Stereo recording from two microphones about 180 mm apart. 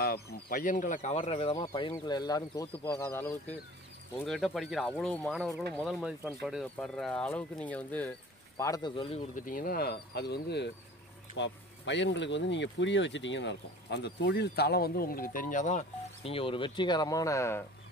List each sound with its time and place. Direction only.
0.0 s speech: 60° left (ahead or behind); by 8.1 s 10° left (ahead or behind)
8.5 s speech: 20° left (ahead or behind)
9.3 s speech: 50° left (ahead or behind); by 10.7 s 70° left (ahead or behind)
11.3 s speech: 85° left; by 15.8 s 45° left (ahead or behind)
16.3 s speech: 30° left (ahead or behind); by 17.6 s 15° left (ahead or behind)